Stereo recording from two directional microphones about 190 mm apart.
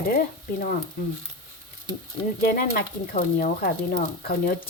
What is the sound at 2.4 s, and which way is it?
Speech, 50° left (ahead or behind).